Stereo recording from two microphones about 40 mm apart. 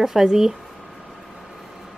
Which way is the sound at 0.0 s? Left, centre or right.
Centre.